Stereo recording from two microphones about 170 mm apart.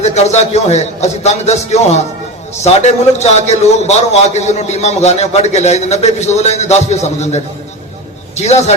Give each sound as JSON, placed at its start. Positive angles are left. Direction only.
{"t": 0.0, "sound": "a man's voice", "side_deg": 40}